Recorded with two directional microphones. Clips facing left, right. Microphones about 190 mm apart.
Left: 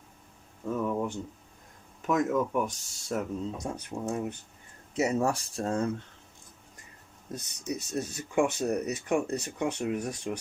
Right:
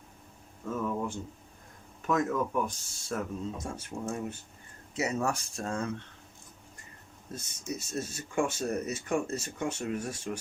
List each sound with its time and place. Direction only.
0.6 s speech: 15° left (ahead or behind)
4.9 s speech: 35° left (ahead or behind)
7.3 s speech: 15° left (ahead or behind)